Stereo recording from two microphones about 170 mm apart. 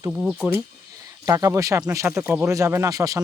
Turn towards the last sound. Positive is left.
turn(degrees=-20)  # may be behind; listen again after turning